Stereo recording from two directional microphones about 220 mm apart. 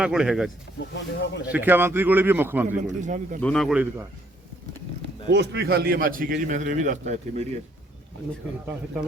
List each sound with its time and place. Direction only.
0.0 s speech: centre (ahead or behind)
0.9 s speech: 50° left (ahead or behind)
1.5 s a man's voice: 5° right (ahead or behind)
2.6 s a man's voice: 35° right (ahead or behind)
3.4 s speech: centre (ahead or behind)
5.3 s a man's voice: 50° right (ahead or behind); by 7.4 s 30° right (ahead or behind)